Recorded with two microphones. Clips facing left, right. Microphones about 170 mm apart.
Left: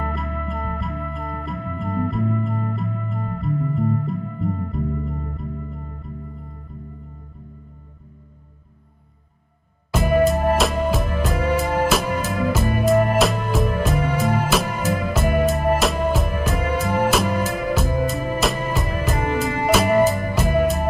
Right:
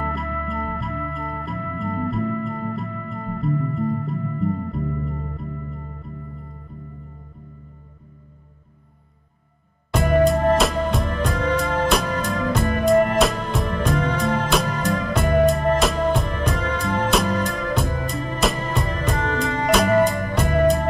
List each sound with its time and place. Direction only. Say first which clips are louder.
0.0 s music: even; centre (ahead or behind)
9.8 s music: even; 5° left (ahead or behind)